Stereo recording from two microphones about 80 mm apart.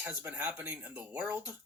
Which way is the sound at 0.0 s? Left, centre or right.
Right.